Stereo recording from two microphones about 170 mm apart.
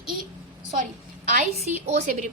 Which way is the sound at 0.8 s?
55° right (ahead or behind).